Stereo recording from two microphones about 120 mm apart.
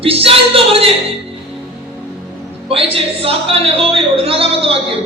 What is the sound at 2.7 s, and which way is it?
Speech, 50° right (ahead or behind).